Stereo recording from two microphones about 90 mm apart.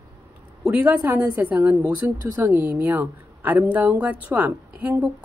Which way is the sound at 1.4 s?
20° right (ahead or behind).